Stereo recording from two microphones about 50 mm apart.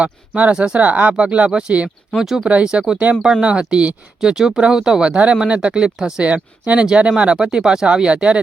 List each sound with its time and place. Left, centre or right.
0.0 s speech: right
2.1 s speech: centre
2.4 s speech: right
5.1 s speech: right
6.2 s speech: right